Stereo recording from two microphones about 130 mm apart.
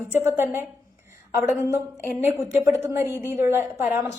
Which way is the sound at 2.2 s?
20° right (ahead or behind).